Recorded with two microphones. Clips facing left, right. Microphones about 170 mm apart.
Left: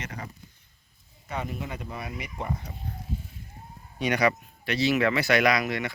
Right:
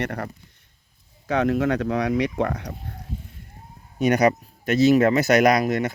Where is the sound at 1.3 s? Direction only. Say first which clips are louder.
Right 13 dB; 90° right.